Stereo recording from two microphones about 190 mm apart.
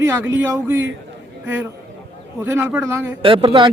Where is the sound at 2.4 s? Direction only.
10° right (ahead or behind).